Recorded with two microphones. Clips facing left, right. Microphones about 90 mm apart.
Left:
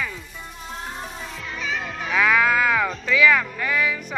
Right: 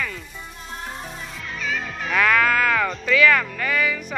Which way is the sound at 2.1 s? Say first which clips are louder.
Even; 5° left (ahead or behind).